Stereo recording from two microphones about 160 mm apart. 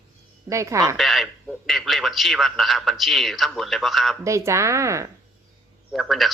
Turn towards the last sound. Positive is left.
turn(degrees=0)  # may be behind; listen again after turning